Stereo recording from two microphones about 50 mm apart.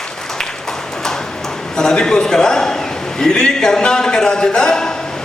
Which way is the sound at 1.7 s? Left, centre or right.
Centre.